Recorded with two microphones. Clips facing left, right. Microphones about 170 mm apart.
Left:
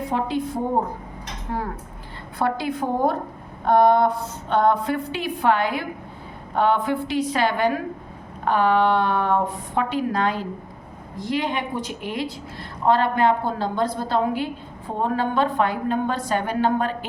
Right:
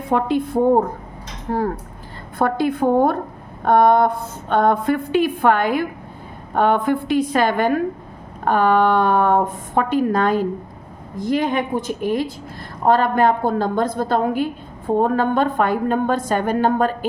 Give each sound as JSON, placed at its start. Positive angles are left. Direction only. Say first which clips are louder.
{"t": 0.1, "sound": "a woman's voice", "louder": "right 8 dB", "side_deg": -55}
{"t": 1.5, "sound": "a woman's voice", "louder": "right 6 dB", "side_deg": -40}
{"t": 2.4, "sound": "a woman's voice", "louder": "right 6 dB", "side_deg": -55}